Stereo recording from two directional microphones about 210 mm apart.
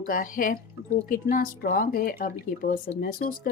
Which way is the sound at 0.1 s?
40° left (ahead or behind).